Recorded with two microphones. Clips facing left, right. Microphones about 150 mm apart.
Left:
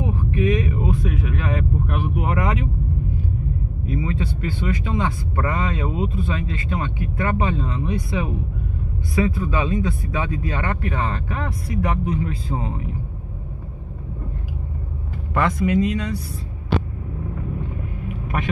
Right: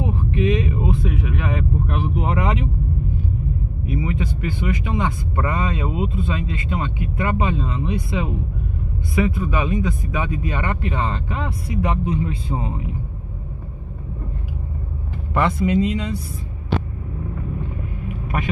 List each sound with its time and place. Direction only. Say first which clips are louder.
0.0 s a man's voice: right 1 dB; 25° right (ahead or behind)
3.8 s speech: right 1 dB; 15° right (ahead or behind)
9.3 s a man's voice: even; 15° right (ahead or behind)
15.3 s a man's voice: right 1 dB; 25° right (ahead or behind)